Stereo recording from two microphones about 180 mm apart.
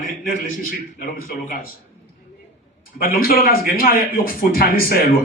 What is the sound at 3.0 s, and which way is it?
A man's voice, 55° left (ahead or behind).